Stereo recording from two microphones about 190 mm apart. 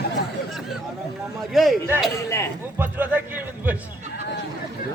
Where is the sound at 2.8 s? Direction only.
10° right (ahead or behind).